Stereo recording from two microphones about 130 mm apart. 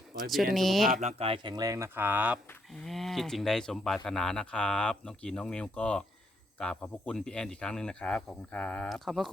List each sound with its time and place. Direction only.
0.3 s speech: centre (ahead or behind)
1.0 s speech: 45° right (ahead or behind); by 1.9 s 25° right (ahead or behind)
2.0 s speech: 15° right (ahead or behind)
2.8 s speech: centre (ahead or behind)